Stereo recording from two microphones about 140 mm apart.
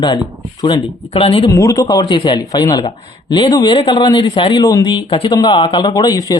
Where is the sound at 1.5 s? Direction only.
25° left (ahead or behind).